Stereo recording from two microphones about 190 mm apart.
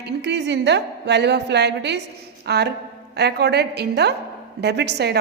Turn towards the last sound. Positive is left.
turn(degrees=-60)  # may be behind; listen again after turning